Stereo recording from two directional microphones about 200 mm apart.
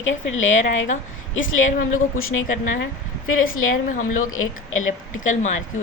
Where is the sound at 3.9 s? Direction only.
40° left (ahead or behind).